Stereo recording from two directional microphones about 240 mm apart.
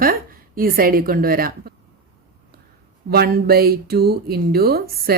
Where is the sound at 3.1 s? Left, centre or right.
Right.